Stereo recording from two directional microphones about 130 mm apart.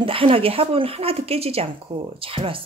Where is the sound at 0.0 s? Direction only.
45° right (ahead or behind).